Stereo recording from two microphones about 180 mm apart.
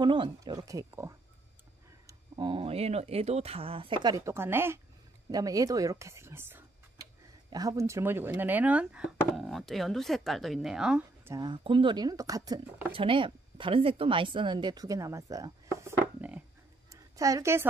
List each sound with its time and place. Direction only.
0.0 s a woman's voice: 25° right (ahead or behind); by 11.3 s 5° right (ahead or behind)
11.3 s a woman's voice: 25° right (ahead or behind)